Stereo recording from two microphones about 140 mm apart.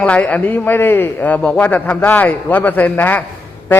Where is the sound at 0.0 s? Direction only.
10° left (ahead or behind).